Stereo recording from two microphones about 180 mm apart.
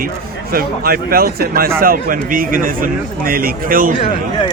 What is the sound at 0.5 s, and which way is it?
A man's voice, 55° right (ahead or behind).